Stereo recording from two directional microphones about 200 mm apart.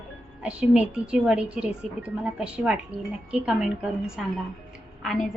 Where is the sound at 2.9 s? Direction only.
30° right (ahead or behind).